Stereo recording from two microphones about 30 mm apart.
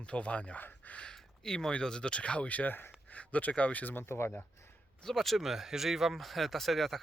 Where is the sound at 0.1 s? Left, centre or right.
Left.